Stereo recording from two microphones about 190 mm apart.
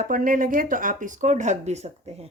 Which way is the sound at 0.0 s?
45° right (ahead or behind).